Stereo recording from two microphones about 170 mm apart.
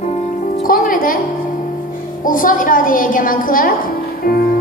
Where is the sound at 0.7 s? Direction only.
55° left (ahead or behind).